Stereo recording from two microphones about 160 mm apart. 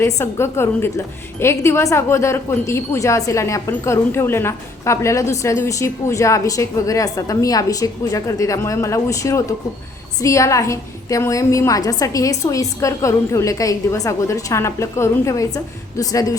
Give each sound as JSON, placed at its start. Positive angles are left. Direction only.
{"t": 0.2, "sound": "a woman's voice", "side_deg": 15}